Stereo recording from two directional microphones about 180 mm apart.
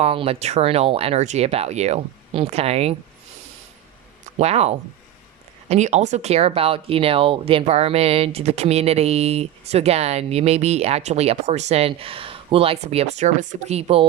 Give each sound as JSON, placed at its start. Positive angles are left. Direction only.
{"t": 0.0, "sound": "speech", "side_deg": -30}
{"t": 4.4, "sound": "speech", "side_deg": -35}